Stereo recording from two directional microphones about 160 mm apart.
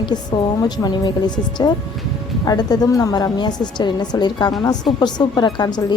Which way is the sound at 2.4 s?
25° left (ahead or behind).